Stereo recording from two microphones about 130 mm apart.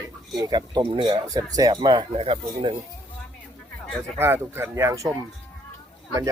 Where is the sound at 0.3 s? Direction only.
30° right (ahead or behind).